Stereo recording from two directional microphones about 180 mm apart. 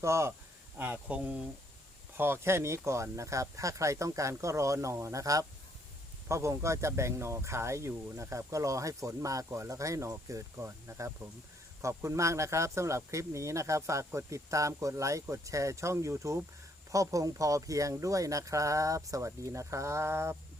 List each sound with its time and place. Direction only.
0.0 s speech: 15° right (ahead or behind)